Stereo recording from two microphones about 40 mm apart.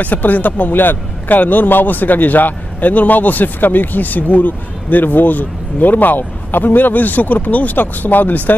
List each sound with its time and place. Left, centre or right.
0.0 s a man's voice: left